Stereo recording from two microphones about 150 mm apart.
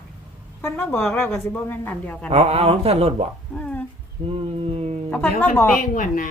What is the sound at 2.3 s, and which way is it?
Speech, 40° right (ahead or behind).